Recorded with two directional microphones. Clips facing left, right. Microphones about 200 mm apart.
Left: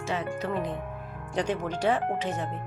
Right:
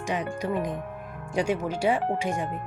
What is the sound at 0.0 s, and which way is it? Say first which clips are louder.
Speech: right 1 dB; 15° right (ahead or behind).